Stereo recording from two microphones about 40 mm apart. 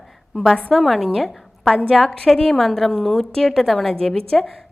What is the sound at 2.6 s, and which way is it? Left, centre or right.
A woman's voice, centre.